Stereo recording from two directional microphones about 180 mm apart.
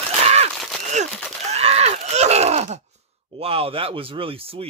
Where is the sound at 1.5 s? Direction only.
35° right (ahead or behind).